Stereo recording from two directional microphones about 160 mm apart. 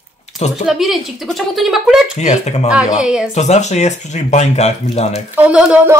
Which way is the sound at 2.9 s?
5° right (ahead or behind).